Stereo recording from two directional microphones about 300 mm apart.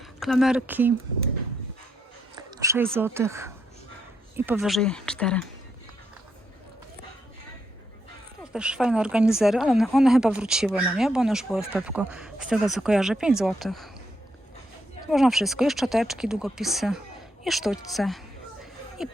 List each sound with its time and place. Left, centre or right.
0.0 s speech: centre
2.3 s speech: centre
8.5 s speech: centre
15.1 s speech: centre